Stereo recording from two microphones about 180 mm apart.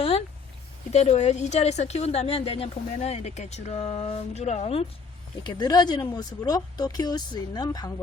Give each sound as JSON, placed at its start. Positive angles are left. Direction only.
{"t": 0.9, "sound": "a woman's voice", "side_deg": 35}
{"t": 5.4, "sound": "speech", "side_deg": 25}